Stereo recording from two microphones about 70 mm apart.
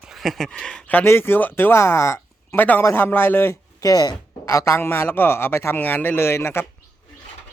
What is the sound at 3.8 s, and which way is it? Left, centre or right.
Speech, left.